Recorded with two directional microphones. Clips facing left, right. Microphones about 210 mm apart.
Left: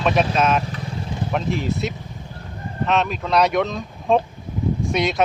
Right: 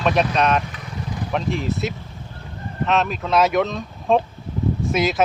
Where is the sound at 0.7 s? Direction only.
30° left (ahead or behind).